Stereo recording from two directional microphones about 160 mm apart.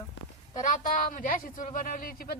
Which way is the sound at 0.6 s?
55° left (ahead or behind).